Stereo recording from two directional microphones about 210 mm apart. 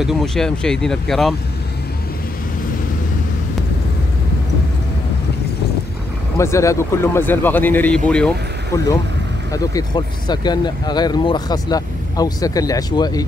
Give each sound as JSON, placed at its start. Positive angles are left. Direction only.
{"t": 0.0, "sound": "speech", "side_deg": 0}
{"t": 6.3, "sound": "speech", "side_deg": 15}
{"t": 9.5, "sound": "speech", "side_deg": 20}